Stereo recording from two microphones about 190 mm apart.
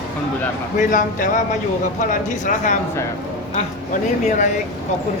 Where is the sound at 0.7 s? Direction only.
40° left (ahead or behind).